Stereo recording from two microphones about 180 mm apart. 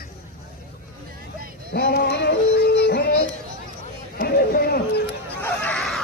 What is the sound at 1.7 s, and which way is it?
Yodeling, 65° left (ahead or behind).